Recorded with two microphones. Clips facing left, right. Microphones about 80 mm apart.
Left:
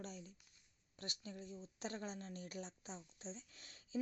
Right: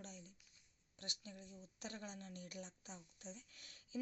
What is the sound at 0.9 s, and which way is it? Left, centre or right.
Speech, left.